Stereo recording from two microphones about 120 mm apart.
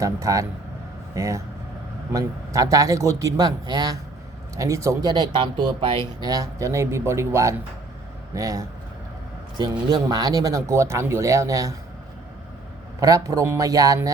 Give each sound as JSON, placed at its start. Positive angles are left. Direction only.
{"t": 0.0, "sound": "speech", "side_deg": -25}
{"t": 5.1, "sound": "speech", "side_deg": -40}
{"t": 13.0, "sound": "speech", "side_deg": -30}